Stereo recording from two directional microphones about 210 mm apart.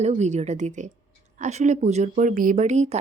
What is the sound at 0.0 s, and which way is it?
A woman's voice, 30° right (ahead or behind).